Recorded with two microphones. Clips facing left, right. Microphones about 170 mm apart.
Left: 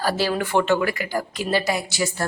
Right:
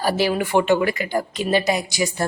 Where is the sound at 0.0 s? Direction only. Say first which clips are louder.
Right 2 dB; 15° right (ahead or behind).